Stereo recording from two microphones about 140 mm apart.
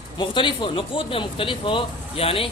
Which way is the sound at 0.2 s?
35° left (ahead or behind).